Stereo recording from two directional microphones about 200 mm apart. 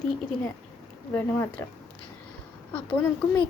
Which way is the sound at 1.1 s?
10° left (ahead or behind).